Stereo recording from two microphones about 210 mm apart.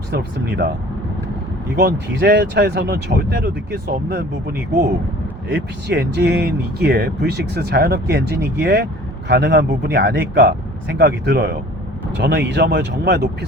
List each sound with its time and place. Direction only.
0.1 s speech: 50° right (ahead or behind)
1.8 s speech: 50° right (ahead or behind)